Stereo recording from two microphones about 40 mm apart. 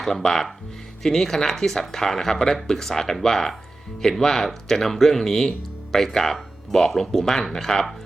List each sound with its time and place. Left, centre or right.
0.0 s speech: centre